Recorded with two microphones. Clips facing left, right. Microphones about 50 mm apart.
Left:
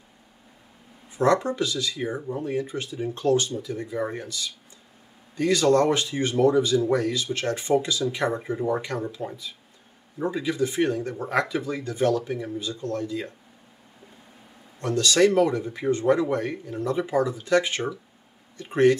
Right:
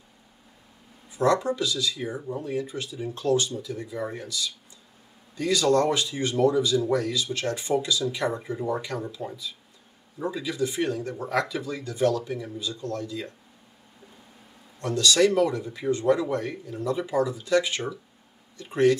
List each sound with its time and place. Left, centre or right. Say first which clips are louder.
1.1 s speech: left 1 dB; left
14.8 s speech: left 1 dB; left